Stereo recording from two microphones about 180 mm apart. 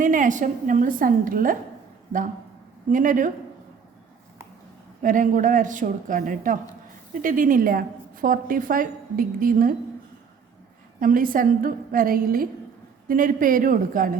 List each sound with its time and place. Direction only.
0.0 s a woman's voice: 45° right (ahead or behind)
2.9 s a woman's voice: 45° right (ahead or behind)
5.0 s a woman's voice: 45° right (ahead or behind)
11.0 s a woman's voice: 50° right (ahead or behind)